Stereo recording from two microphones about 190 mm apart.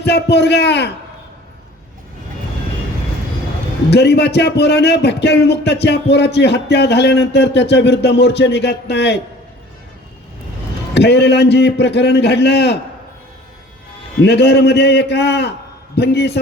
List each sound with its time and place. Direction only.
0.0 s a man's voice: 60° left (ahead or behind)
3.8 s a man's voice: 60° left (ahead or behind)
10.9 s a man's voice: 60° left (ahead or behind)
14.2 s a man's voice: 60° left (ahead or behind)